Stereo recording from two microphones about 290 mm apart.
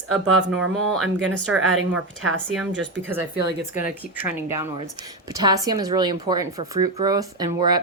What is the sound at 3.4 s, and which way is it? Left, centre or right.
Speech, left.